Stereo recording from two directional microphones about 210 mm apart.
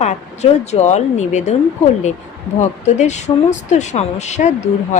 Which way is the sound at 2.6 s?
35° left (ahead or behind).